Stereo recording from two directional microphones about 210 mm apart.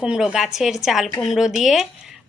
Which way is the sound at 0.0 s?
5° right (ahead or behind).